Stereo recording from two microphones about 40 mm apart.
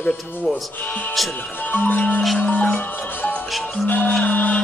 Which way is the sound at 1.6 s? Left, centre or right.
Left.